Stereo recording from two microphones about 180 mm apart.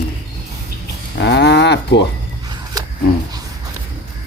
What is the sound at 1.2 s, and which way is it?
Cattle, 75° left (ahead or behind).